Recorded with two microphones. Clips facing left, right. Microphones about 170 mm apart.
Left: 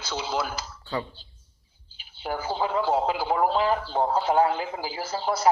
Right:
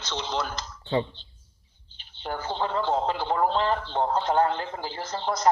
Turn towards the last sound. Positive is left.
turn(degrees=10)  # may be behind; listen again after turning